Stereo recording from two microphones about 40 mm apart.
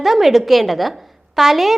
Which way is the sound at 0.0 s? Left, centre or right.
Centre.